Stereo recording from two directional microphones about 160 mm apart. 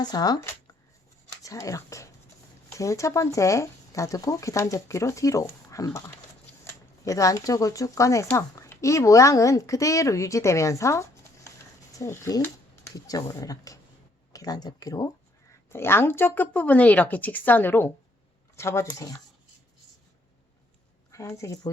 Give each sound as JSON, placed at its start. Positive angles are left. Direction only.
{"t": 0.0, "sound": "speech", "side_deg": 25}
{"t": 21.1, "sound": "a woman's voice", "side_deg": 20}